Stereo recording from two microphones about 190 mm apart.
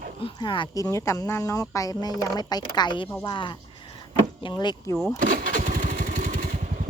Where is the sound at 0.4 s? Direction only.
25° left (ahead or behind).